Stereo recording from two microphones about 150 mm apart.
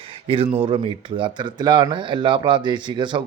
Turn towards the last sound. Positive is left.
turn(degrees=-30)  # may be behind; listen again after turning